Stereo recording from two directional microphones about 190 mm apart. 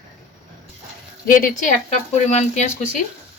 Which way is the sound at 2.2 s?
35° left (ahead or behind).